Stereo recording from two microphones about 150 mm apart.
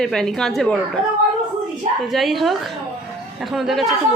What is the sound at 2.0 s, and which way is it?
A man's voice, centre (ahead or behind).